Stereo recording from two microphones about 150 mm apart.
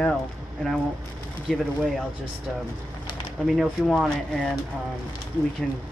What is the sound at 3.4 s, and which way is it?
Speech, centre (ahead or behind).